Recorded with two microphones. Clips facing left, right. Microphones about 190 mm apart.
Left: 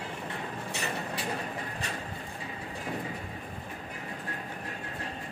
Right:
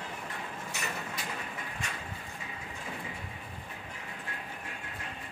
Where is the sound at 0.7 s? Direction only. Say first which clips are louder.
Left 5 dB; 35° left (ahead or behind).